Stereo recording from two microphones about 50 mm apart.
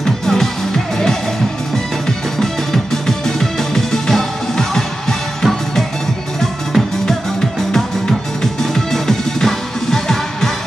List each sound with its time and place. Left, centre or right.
0.0 s music: centre